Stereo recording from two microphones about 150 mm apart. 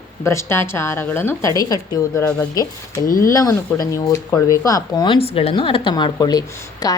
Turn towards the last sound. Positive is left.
turn(degrees=25)  # may be behind; listen again after turning